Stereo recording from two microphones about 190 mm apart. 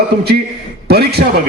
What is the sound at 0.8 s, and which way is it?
Speech, 55° right (ahead or behind).